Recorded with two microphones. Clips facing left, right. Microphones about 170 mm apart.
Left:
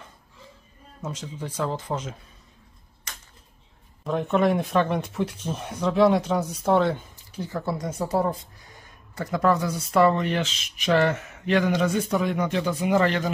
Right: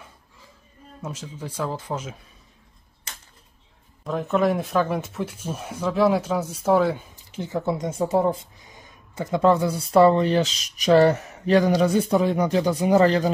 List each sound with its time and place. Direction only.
1.0 s speech: 10° right (ahead or behind)
4.0 s speech: centre (ahead or behind)
7.2 s speech: 20° right (ahead or behind)